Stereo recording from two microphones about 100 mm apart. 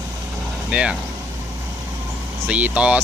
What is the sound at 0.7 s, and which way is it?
Speech, 10° right (ahead or behind).